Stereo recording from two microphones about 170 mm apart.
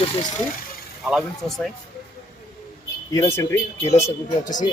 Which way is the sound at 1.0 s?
Centre (ahead or behind).